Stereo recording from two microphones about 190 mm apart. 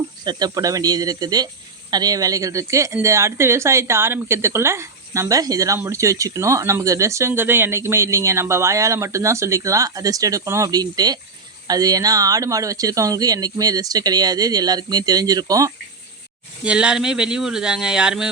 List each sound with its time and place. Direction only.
0.3 s a woman's voice: 20° right (ahead or behind)
16.6 s speech: 5° right (ahead or behind)